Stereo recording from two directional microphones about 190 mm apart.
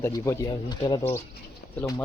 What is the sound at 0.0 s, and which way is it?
Speech, 20° left (ahead or behind).